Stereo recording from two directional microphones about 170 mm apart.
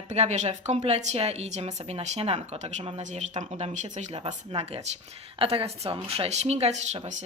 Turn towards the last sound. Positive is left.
turn(degrees=-40)  # may be behind; listen again after turning